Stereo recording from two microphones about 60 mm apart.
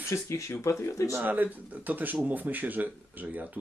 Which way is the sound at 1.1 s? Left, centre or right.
Right.